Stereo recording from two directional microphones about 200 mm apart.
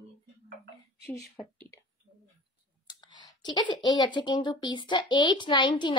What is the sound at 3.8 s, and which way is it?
Speech, 20° left (ahead or behind).